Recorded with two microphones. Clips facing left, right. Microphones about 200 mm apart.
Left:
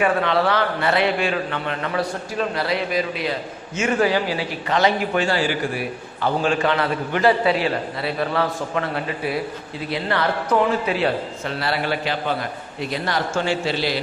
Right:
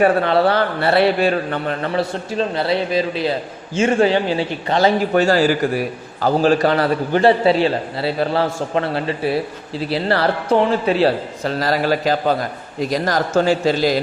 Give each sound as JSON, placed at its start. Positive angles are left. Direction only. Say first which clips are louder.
{"t": 0.0, "sound": "a man's voice", "louder": "right 5 dB", "side_deg": -35}